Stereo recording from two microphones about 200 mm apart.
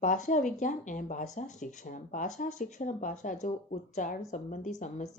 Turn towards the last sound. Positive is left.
turn(degrees=40)  # may be behind; listen again after turning